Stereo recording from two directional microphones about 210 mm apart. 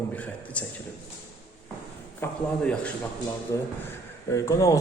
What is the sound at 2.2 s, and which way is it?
Speech, 10° left (ahead or behind).